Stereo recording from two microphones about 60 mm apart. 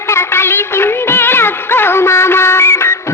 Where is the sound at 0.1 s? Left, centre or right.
Left.